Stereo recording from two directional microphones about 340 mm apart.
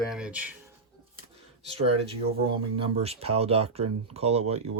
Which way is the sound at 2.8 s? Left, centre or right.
Centre.